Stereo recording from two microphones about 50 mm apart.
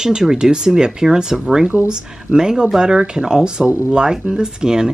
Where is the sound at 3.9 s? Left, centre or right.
Centre.